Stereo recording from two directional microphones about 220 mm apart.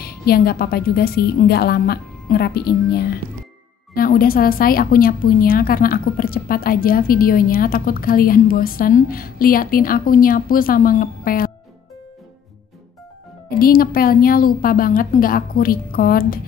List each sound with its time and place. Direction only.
0.0 s a woman's voice: 45° left (ahead or behind)
13.6 s a woman's voice: 40° left (ahead or behind)